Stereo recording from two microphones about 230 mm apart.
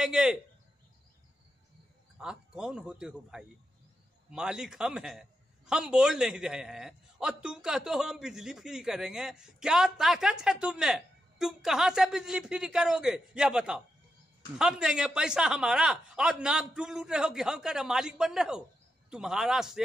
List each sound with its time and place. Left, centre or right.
0.0 s a man's voice: centre
2.1 s a man's voice: centre